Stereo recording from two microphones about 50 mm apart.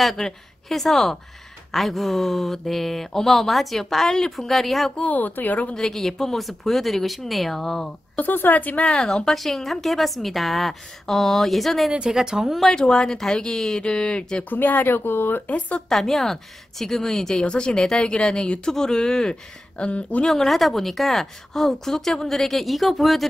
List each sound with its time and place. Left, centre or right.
0.2 s speech: left
0.7 s speech: centre
5.0 s a woman's voice: left
5.8 s speech: centre
8.2 s a woman's voice: left
9.0 s speech: centre
11.9 s speech: centre
12.7 s a woman's voice: centre
13.8 s speech: centre
14.5 s speech: left
15.4 s speech: left
15.9 s a woman's voice: centre
19.8 s speech: left
20.2 s speech: centre